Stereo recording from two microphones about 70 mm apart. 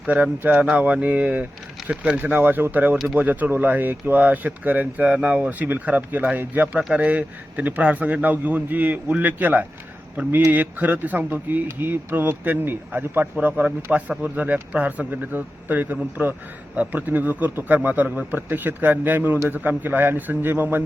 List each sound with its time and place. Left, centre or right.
0.1 s speech: right
1.8 s a sound: centre
2.1 s speech: right